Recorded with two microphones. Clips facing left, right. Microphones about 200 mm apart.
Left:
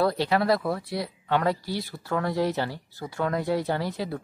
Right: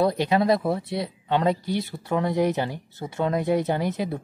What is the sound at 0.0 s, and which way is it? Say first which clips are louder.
Speech: right 2 dB; 20° right (ahead or behind).